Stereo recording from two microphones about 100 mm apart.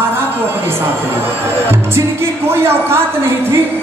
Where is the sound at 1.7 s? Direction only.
25° right (ahead or behind).